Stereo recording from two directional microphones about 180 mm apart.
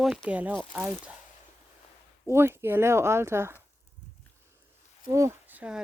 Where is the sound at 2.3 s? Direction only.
15° right (ahead or behind).